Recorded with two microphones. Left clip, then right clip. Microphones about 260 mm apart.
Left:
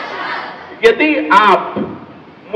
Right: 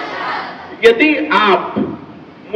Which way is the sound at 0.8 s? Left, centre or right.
Centre.